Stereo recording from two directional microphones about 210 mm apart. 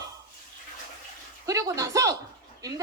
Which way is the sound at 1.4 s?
15° right (ahead or behind).